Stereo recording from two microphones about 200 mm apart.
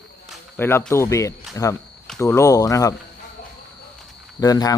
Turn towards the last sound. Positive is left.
turn(degrees=20)  # may be behind; listen again after turning